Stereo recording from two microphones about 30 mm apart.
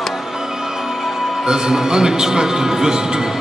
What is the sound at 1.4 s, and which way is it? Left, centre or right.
A man's voice, right.